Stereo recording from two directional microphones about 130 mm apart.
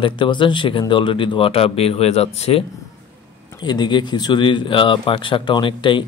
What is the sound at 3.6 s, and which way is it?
Speech, 35° left (ahead or behind).